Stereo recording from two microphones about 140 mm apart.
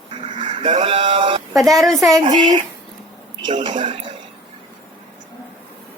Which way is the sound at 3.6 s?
35° right (ahead or behind).